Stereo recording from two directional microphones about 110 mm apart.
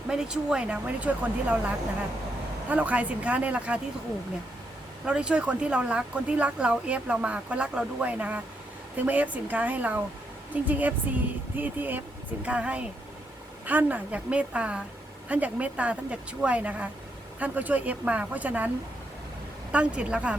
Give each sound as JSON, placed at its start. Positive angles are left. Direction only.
{"t": 0.1, "sound": "a woman's voice", "side_deg": -5}
{"t": 5.0, "sound": "a woman's voice", "side_deg": -10}
{"t": 19.7, "sound": "a woman's voice", "side_deg": -10}